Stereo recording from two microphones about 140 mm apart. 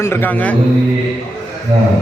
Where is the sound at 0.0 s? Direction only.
15° left (ahead or behind).